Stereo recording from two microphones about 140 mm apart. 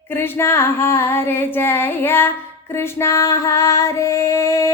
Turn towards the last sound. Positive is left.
turn(degrees=20)  # may be behind; listen again after turning